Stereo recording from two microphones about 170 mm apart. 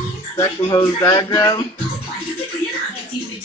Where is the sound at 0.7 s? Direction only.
25° left (ahead or behind).